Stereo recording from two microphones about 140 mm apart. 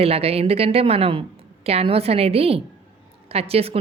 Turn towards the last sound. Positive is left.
turn(degrees=-45)  # may be behind; listen again after turning